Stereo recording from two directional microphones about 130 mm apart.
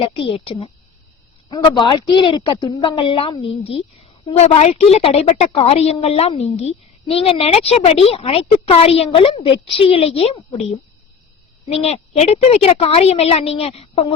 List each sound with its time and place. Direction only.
0.0 s a woman's voice: 45° left (ahead or behind)
1.6 s a woman's voice: 35° left (ahead or behind); by 10.3 s 50° left (ahead or behind)
10.5 s speech: 60° left (ahead or behind)
11.8 s a woman's voice: 60° left (ahead or behind)